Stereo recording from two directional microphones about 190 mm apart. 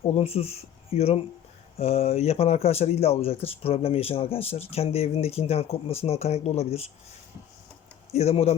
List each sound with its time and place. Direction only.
0.0 s speech: 30° left (ahead or behind)
8.1 s speech: 35° left (ahead or behind)